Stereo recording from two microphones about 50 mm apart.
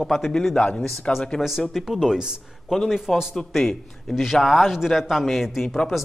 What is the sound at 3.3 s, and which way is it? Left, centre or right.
A man's voice, centre.